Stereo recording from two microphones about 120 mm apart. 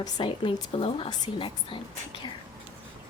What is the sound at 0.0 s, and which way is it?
A woman's voice, 40° left (ahead or behind).